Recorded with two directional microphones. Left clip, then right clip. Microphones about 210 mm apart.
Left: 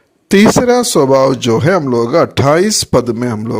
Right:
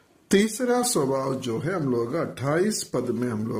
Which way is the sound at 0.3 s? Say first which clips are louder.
Left 14 dB; 40° left (ahead or behind).